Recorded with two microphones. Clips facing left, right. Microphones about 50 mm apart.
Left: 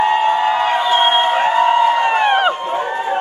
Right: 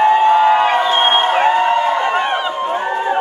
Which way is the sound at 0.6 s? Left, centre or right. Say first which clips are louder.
Right 1 dB; right.